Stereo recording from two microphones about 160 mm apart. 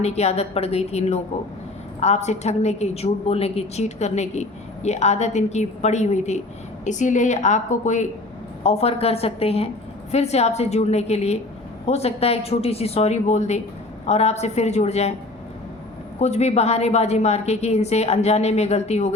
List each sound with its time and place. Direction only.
0.0 s a woman's voice: 40° left (ahead or behind)
16.2 s a woman's voice: 45° left (ahead or behind)